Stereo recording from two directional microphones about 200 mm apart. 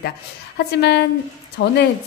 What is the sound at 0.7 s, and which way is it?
A woman's voice, 55° left (ahead or behind).